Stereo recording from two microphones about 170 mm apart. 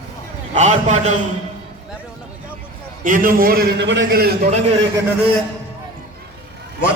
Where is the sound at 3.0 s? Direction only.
55° right (ahead or behind).